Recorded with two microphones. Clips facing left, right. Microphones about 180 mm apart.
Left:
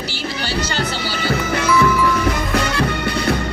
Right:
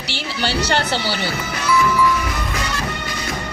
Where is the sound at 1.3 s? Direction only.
65° left (ahead or behind).